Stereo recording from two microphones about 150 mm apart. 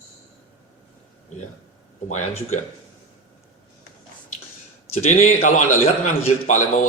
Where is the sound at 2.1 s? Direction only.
50° left (ahead or behind).